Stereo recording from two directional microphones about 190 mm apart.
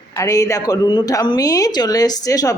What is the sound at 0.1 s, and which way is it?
Speech, 15° left (ahead or behind).